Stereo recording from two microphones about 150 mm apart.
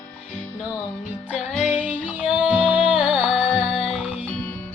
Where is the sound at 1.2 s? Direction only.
10° right (ahead or behind).